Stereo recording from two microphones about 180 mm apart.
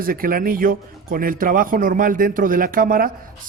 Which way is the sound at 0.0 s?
55° right (ahead or behind).